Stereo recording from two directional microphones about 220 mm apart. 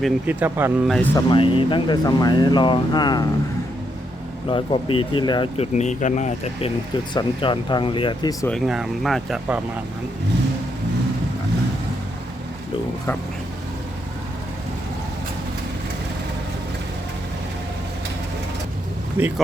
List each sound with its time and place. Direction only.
0.0 s speech: 10° right (ahead or behind)
0.9 s speech: 5° left (ahead or behind)
1.1 s speech: 20° left (ahead or behind)
4.4 s speech: 25° left (ahead or behind)
8.4 s speech: centre (ahead or behind)
19.2 s speech: 10° right (ahead or behind)